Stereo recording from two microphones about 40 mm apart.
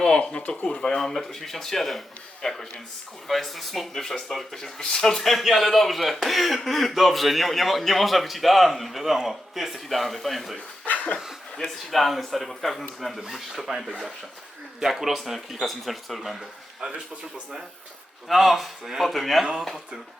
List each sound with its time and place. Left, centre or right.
0.0 s speech: left
0.8 s a man's voice: centre
5.2 s speech: centre
10.8 s a sound: left
11.6 s speech: centre
13.7 s speech: centre
16.8 s a man's voice: right
18.3 s speech: centre